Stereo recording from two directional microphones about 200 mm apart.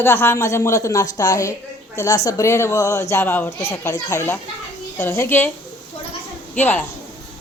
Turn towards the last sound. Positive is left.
turn(degrees=10)  # may be behind; listen again after turning